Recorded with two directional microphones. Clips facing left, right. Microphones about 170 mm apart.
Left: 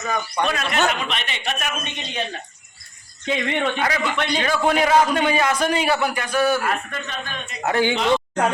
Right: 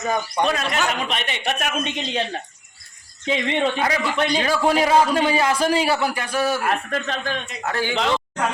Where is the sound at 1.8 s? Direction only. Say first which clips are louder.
Right 6 dB; 90° right.